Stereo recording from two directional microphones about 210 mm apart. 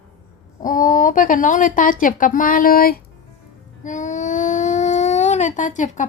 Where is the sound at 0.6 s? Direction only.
40° left (ahead or behind).